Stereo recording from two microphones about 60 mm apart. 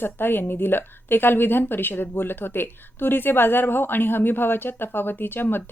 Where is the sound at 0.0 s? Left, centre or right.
Left.